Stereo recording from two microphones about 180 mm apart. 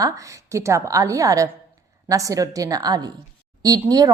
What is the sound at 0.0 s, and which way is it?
A woman's voice, 15° right (ahead or behind).